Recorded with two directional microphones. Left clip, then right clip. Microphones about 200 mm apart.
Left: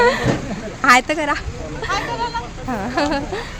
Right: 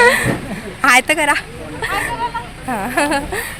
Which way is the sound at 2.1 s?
55° left (ahead or behind).